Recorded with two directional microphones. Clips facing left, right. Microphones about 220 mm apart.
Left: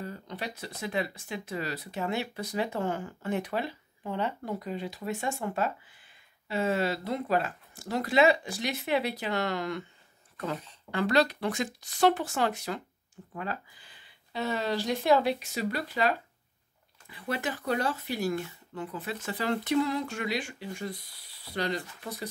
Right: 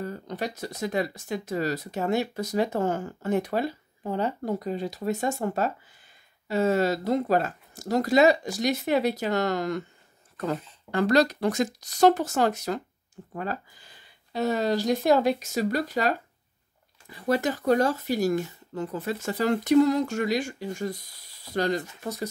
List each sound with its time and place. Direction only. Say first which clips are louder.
0.0 s speech: right 6 dB; 45° right (ahead or behind)